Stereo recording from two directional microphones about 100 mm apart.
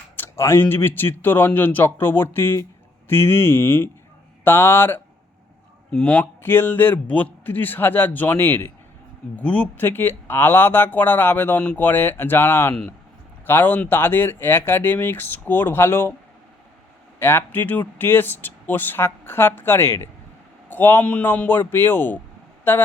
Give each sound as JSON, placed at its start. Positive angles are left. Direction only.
{"t": 0.2, "sound": "speech", "side_deg": 25}
{"t": 5.9, "sound": "speech", "side_deg": 10}
{"t": 6.4, "sound": "speech", "side_deg": 20}
{"t": 17.2, "sound": "speech", "side_deg": 25}